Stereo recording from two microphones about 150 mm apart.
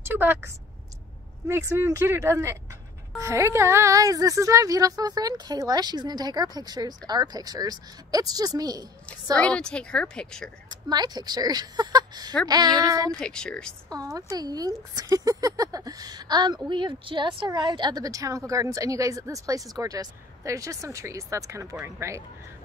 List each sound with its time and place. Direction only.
0.0 s a sound: 15° right (ahead or behind)
1.5 s a woman's voice: 15° right (ahead or behind)
9.4 s a woman's voice: 5° left (ahead or behind)
10.7 s a woman's voice: 25° right (ahead or behind)
13.2 s speech: 5° left (ahead or behind)
13.9 s a woman's voice: 25° right (ahead or behind)